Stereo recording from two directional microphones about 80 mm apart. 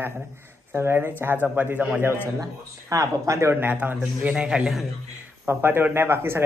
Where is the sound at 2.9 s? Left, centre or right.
Right.